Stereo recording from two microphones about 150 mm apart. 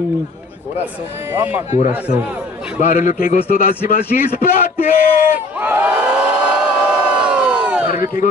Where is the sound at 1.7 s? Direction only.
55° left (ahead or behind).